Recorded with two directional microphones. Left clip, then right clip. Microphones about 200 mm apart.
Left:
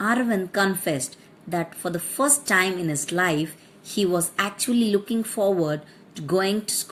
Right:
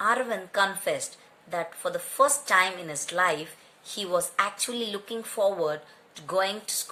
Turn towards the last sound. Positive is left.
turn(degrees=25)  # may be behind; listen again after turning